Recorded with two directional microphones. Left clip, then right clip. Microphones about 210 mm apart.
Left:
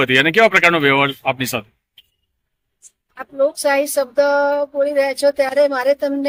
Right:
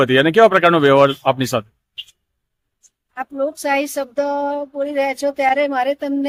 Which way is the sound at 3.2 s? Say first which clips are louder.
Left 4 dB; 5° right (ahead or behind).